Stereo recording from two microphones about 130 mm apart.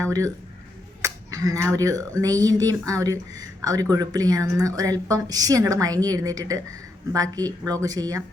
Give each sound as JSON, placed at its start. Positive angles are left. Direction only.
{"t": 0.0, "sound": "speech", "side_deg": -25}